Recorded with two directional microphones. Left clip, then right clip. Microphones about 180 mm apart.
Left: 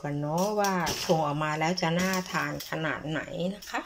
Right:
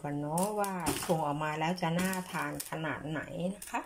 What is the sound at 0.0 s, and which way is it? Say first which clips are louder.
Speech: left 4 dB; centre (ahead or behind).